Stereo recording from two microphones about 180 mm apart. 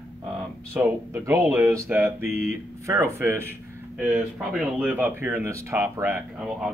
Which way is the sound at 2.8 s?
15° right (ahead or behind).